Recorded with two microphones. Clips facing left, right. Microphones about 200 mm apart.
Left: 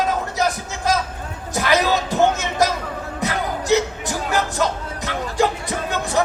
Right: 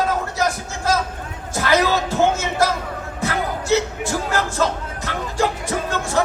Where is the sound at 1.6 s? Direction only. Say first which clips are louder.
Even; 15° left (ahead or behind).